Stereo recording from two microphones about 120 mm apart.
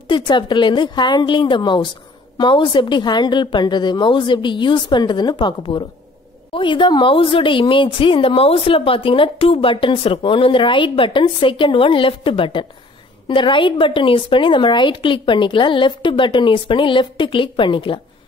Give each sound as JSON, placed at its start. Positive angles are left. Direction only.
{"t": 0.1, "sound": "a woman's voice", "side_deg": 40}